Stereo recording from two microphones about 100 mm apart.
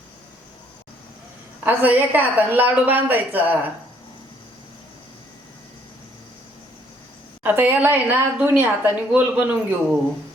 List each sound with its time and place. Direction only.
1.6 s a woman's voice: 20° right (ahead or behind)
7.4 s a woman's voice: 20° right (ahead or behind)